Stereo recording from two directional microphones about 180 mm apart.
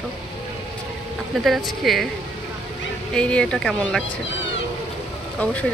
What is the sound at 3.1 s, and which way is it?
Speech, 5° left (ahead or behind).